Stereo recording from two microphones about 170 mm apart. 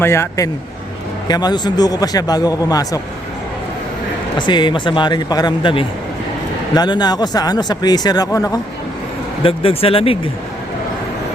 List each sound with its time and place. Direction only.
0.0 s a man's voice: 15° left (ahead or behind)
4.4 s speech: 25° left (ahead or behind)
9.4 s speech: 35° left (ahead or behind)